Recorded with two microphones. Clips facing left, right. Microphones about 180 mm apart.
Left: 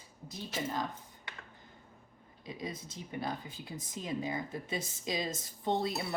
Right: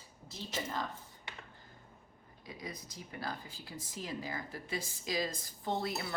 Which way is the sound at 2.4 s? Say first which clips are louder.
Left 4 dB; 25° left (ahead or behind).